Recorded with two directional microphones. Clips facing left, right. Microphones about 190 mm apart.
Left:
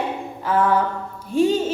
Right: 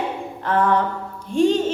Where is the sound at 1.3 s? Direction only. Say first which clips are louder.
Right 1 dB; 5° left (ahead or behind).